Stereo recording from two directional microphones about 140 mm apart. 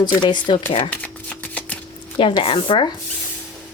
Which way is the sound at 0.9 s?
10° left (ahead or behind).